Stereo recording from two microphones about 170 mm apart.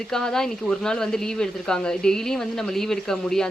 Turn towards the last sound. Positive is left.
turn(degrees=5)  # may be behind; listen again after turning